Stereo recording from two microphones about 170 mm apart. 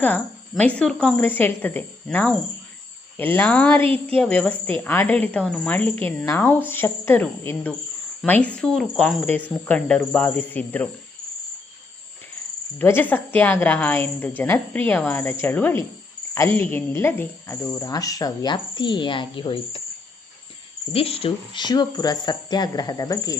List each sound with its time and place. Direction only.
0.0 s speech: 10° left (ahead or behind)
12.8 s speech: 10° left (ahead or behind); by 19.8 s 30° left (ahead or behind)
20.9 s speech: 35° left (ahead or behind)